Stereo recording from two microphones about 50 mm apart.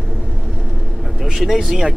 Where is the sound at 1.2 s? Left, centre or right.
Centre.